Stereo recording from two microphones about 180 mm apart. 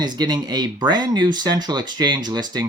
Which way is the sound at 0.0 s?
25° right (ahead or behind).